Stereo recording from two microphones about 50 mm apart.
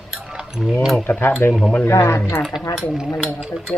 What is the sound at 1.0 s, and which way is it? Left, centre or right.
Speech, left.